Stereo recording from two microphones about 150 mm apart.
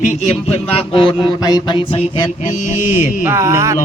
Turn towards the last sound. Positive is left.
turn(degrees=-20)  # may be behind; listen again after turning